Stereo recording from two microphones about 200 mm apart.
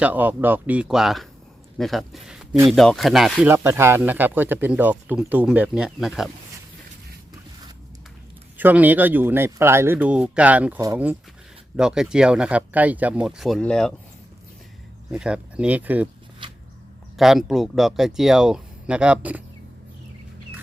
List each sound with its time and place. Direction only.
0.0 s speech: 10° right (ahead or behind)
8.5 s speech: 10° right (ahead or behind)
15.1 s speech: 5° right (ahead or behind)
16.4 s a sound: 25° right (ahead or behind)
17.2 s speech: centre (ahead or behind)